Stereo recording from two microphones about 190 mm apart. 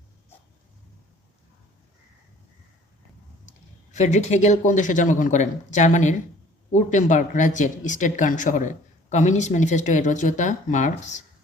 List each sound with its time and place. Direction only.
3.9 s speech: 40° left (ahead or behind)